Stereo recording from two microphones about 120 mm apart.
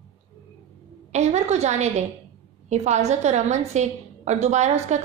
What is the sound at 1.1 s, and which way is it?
A woman's voice, 70° right (ahead or behind).